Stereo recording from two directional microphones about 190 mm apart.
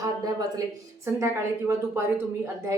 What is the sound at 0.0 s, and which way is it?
A woman's voice, 20° right (ahead or behind).